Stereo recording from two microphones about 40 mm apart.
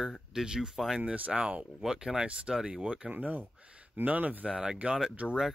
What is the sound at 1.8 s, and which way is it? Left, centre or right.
Speech, centre.